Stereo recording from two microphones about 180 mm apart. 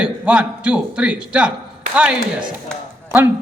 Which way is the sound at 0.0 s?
5° right (ahead or behind).